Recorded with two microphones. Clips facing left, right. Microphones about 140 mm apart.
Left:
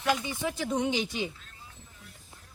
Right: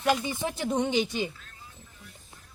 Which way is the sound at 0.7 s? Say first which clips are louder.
Right 2 dB; 55° right (ahead or behind).